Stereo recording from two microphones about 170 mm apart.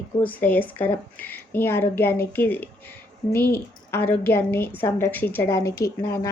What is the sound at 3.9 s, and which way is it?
Speech, 10° left (ahead or behind).